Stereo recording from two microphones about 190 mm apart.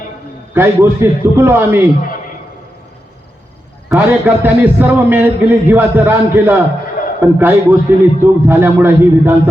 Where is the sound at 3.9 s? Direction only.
10° right (ahead or behind).